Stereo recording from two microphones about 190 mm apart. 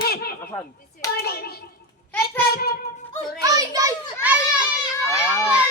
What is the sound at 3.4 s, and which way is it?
Speech, 20° right (ahead or behind).